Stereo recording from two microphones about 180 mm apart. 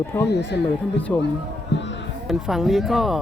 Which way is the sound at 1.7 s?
80° left.